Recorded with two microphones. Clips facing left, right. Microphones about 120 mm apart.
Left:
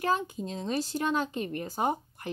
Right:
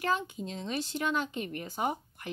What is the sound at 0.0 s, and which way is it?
Speech, 40° left (ahead or behind).